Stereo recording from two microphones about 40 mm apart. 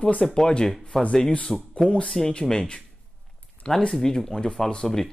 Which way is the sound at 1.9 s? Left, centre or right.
Left.